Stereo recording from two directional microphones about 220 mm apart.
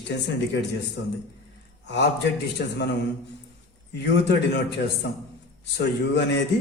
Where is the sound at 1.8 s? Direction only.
50° left (ahead or behind).